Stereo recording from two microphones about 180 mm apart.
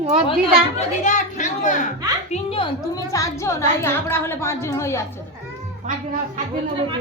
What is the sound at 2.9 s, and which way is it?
A woman's voice, 20° left (ahead or behind).